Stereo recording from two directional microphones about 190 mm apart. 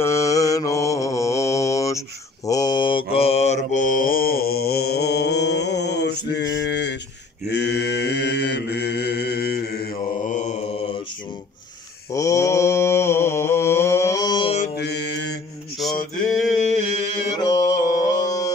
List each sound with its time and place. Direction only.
0.0 s mantra: 15° left (ahead or behind); by 9.6 s 60° left (ahead or behind)
10.2 s mantra: 40° left (ahead or behind)
12.1 s mantra: 15° left (ahead or behind)
14.8 s mantra: 65° left (ahead or behind)
16.0 s mantra: 40° left (ahead or behind)
17.9 s mantra: 20° left (ahead or behind)